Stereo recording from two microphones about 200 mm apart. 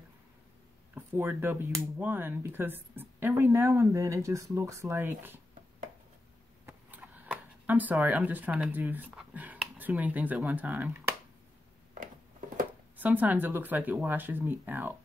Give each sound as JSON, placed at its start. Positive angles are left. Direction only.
{"t": 0.9, "sound": "speech", "side_deg": -10}
{"t": 6.6, "sound": "speech", "side_deg": -10}
{"t": 12.9, "sound": "speech", "side_deg": -10}